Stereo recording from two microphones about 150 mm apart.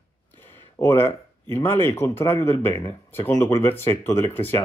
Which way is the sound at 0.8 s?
15° left (ahead or behind).